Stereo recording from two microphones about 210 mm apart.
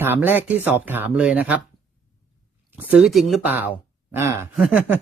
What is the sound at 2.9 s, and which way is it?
Speech, centre (ahead or behind).